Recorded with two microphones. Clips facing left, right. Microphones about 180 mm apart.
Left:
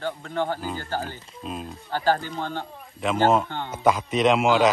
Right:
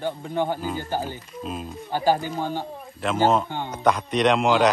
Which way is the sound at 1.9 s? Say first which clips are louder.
Right 2 dB; 15° right (ahead or behind).